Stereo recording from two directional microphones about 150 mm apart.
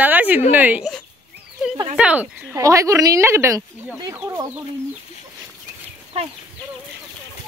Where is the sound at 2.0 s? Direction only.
10° right (ahead or behind).